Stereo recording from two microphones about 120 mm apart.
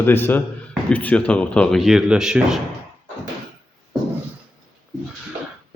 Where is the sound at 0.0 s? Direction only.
15° left (ahead or behind).